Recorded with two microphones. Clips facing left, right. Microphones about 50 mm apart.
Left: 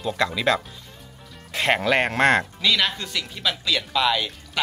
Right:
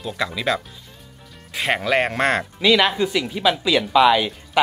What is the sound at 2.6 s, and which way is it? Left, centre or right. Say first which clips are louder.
Speech: right 6 dB; centre.